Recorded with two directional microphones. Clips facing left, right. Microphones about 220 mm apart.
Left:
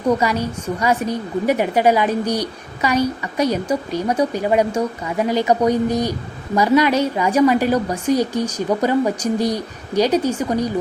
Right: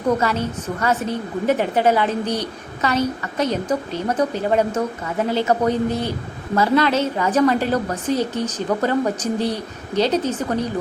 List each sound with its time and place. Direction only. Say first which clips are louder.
0.2 s a woman's voice: left 1 dB; 15° left (ahead or behind)